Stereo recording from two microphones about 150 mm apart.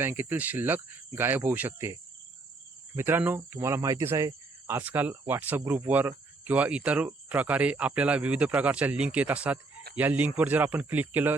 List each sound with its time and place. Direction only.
0.0 s speech: 15° right (ahead or behind)
4.8 s speech: 10° right (ahead or behind)